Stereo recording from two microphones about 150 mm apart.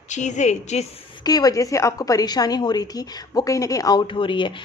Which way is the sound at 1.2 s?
25° left (ahead or behind).